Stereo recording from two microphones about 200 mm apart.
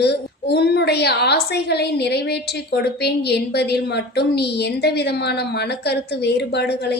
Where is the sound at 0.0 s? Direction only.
55° left (ahead or behind).